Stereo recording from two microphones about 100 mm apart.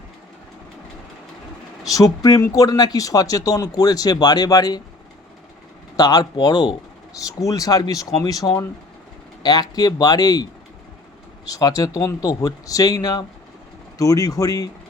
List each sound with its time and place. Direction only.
1.8 s speech: 35° left (ahead or behind)
6.0 s speech: 40° left (ahead or behind)
11.4 s speech: 35° left (ahead or behind)